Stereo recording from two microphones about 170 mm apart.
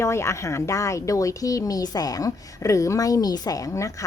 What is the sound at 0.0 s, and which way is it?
Speech, 15° left (ahead or behind).